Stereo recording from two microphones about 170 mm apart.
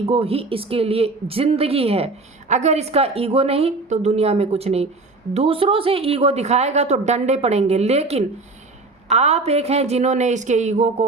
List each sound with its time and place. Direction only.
0.0 s a woman's voice: 35° right (ahead or behind)